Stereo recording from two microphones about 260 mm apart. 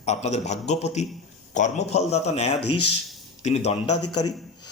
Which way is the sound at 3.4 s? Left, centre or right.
Left.